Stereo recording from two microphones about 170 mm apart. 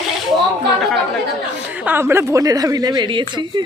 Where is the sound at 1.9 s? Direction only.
15° right (ahead or behind).